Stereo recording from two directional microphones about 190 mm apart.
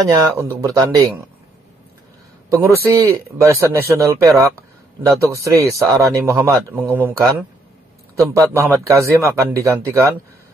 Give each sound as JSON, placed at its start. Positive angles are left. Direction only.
{"t": 0.1, "sound": "speech", "side_deg": -15}
{"t": 2.5, "sound": "speech", "side_deg": -15}